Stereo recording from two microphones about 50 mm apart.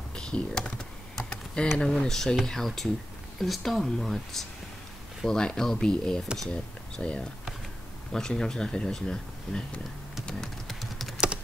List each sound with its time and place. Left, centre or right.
0.1 s computer keyboard: centre
1.8 s speech: centre
10.7 s typing: centre